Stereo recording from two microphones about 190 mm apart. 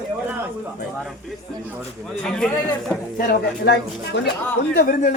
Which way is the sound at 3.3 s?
65° left (ahead or behind).